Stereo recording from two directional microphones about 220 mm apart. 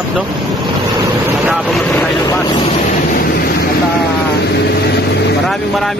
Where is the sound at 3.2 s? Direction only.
45° left (ahead or behind).